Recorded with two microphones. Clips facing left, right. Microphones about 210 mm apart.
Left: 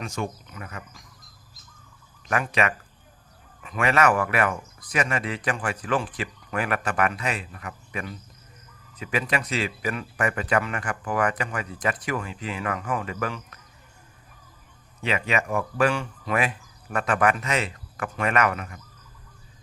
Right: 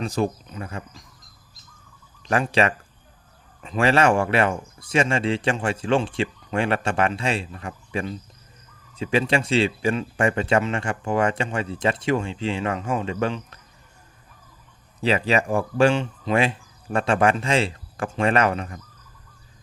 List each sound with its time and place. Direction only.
0.0 s speech: 35° right (ahead or behind)
2.2 s speech: 30° right (ahead or behind)
15.0 s speech: 35° right (ahead or behind)